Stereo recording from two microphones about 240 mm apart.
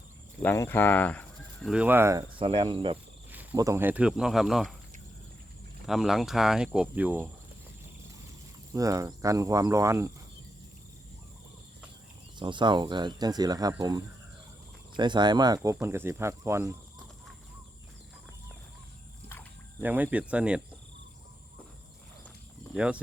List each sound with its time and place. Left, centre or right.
0.4 s speech: centre
1.7 s cricket: centre
3.3 s speech: centre
5.8 s speech: centre
8.7 s speech: centre
12.4 s speech: centre
19.8 s speech: centre
22.7 s speech: centre